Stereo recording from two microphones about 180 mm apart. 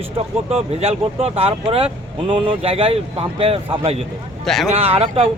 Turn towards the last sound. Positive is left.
turn(degrees=-35)  # may be behind; listen again after turning